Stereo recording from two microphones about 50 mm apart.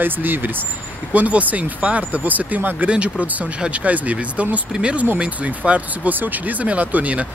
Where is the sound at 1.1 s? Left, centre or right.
Right.